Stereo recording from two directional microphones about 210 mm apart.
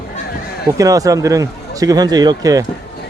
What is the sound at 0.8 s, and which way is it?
Speech, 15° right (ahead or behind).